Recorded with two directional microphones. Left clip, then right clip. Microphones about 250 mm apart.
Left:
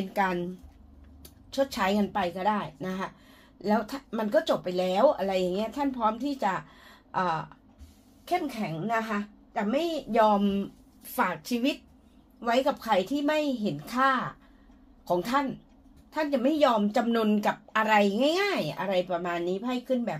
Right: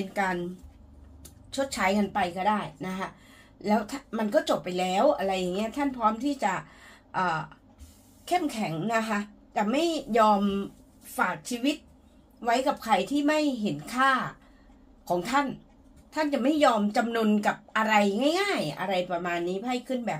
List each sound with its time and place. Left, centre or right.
0.1 s a woman's voice: left
1.5 s a woman's voice: left
8.3 s a woman's voice: centre
11.1 s a woman's voice: left